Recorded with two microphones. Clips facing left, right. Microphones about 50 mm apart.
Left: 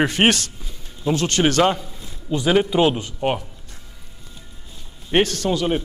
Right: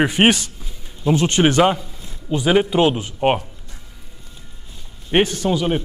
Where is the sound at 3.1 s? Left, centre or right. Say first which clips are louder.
Right 4 dB; right.